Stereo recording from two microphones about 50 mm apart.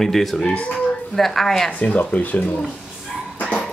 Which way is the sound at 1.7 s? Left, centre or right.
Left.